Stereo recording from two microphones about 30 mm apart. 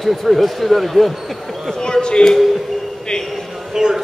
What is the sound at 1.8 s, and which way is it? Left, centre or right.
Speech, left.